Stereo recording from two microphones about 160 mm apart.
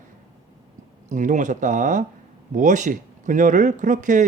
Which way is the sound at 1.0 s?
50° right (ahead or behind).